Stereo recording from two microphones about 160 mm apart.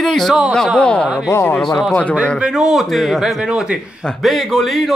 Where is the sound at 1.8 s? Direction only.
5° left (ahead or behind).